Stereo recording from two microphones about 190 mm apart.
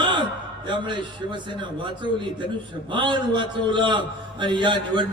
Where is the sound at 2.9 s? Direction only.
25° right (ahead or behind).